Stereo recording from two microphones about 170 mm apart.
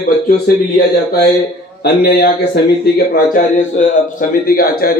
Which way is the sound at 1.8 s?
70° left (ahead or behind).